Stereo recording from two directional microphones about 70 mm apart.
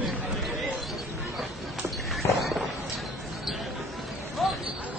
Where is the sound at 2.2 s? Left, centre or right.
Left.